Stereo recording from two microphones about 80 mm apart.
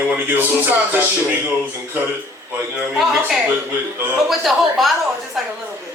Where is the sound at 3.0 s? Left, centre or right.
Centre.